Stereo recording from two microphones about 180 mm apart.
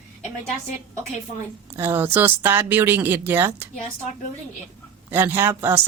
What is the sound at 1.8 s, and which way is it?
Speech, 10° right (ahead or behind).